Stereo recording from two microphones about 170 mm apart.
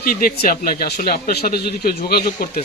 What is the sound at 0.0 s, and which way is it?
Speech, 55° left (ahead or behind).